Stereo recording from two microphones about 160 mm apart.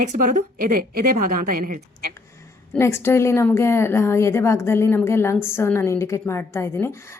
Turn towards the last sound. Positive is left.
turn(degrees=15)  # may be behind; listen again after turning